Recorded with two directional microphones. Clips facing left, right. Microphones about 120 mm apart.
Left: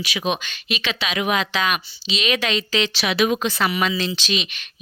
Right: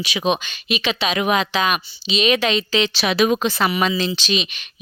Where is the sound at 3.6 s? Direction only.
25° right (ahead or behind).